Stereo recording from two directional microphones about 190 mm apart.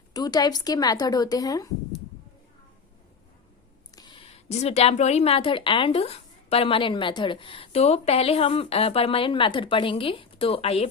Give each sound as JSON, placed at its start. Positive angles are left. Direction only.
{"t": 0.1, "sound": "speech", "side_deg": 20}
{"t": 3.9, "sound": "a sound", "side_deg": 20}
{"t": 4.4, "sound": "speech", "side_deg": 35}